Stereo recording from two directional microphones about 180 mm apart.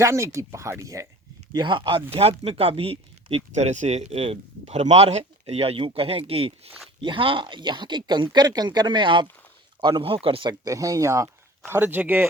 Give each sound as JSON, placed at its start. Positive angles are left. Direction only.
{"t": 0.0, "sound": "speech", "side_deg": -15}